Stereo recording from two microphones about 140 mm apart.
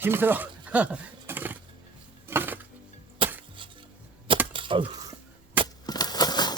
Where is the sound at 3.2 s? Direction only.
40° right (ahead or behind).